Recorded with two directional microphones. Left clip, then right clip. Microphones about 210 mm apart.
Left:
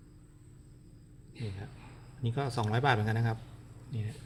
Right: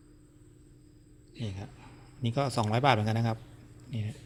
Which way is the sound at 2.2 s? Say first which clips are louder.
Right 4 dB; 25° right (ahead or behind).